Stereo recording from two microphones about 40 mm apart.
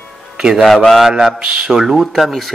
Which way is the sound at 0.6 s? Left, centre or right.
Centre.